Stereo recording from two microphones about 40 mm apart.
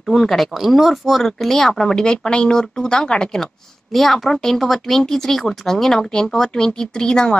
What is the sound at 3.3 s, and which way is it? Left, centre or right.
A woman's voice, centre.